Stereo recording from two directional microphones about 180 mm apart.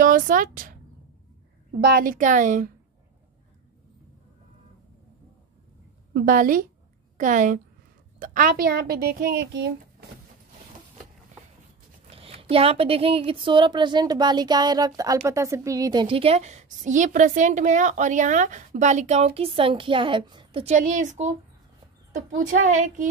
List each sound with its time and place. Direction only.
0.0 s speech: 50° right (ahead or behind)
1.8 s a woman's voice: 60° right (ahead or behind)
6.1 s a woman's voice: 50° right (ahead or behind)
12.1 s speech: 30° right (ahead or behind)
20.6 s a woman's voice: 40° right (ahead or behind)